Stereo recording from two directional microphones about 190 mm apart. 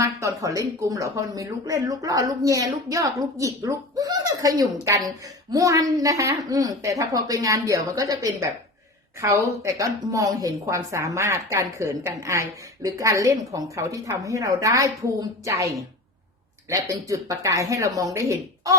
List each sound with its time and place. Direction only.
0.0 s a woman's voice: 15° right (ahead or behind)
16.6 s a woman's voice: 15° right (ahead or behind)